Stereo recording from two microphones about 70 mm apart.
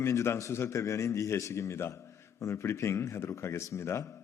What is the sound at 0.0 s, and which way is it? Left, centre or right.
A man's voice, left.